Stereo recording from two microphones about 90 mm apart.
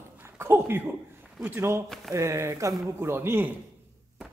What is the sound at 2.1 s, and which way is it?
A man's voice, 30° right (ahead or behind).